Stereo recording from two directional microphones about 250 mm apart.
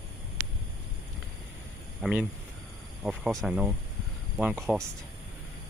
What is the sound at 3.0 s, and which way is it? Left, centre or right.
Speech, centre.